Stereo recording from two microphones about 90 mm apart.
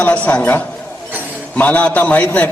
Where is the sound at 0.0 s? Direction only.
15° left (ahead or behind).